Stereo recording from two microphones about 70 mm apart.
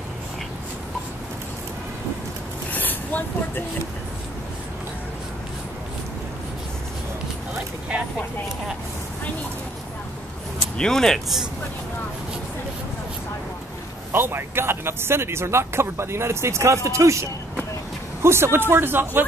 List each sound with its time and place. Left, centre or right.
2.7 s a sound: left
10.8 s speech: centre
14.1 s speech: right